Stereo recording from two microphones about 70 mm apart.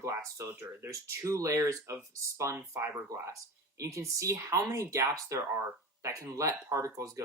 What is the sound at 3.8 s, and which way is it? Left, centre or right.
Speech, right.